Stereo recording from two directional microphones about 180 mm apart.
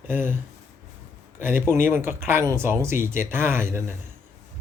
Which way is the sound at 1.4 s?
10° right (ahead or behind).